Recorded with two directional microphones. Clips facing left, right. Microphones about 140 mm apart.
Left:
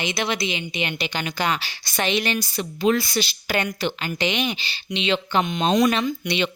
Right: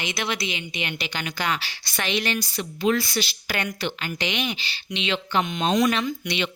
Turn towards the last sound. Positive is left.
turn(degrees=25)  # may be behind; listen again after turning